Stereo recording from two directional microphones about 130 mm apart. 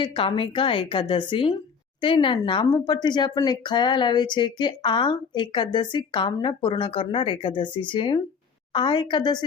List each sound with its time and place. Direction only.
0.0 s speech: 45° left (ahead or behind)